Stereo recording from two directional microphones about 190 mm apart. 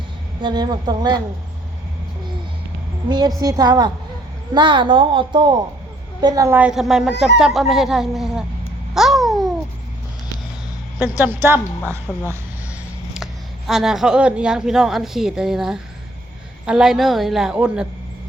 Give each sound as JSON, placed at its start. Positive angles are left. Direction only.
{"t": 0.4, "sound": "a woman's voice", "side_deg": -20}
{"t": 3.1, "sound": "a woman's voice", "side_deg": -20}
{"t": 9.0, "sound": "babbling", "side_deg": 0}
{"t": 11.8, "sound": "speech", "side_deg": 10}
{"t": 13.7, "sound": "a woman's voice", "side_deg": 0}